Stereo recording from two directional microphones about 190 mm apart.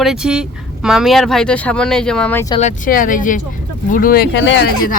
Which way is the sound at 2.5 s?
40° left (ahead or behind).